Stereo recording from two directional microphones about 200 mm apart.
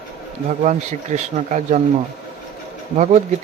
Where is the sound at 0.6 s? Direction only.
35° right (ahead or behind).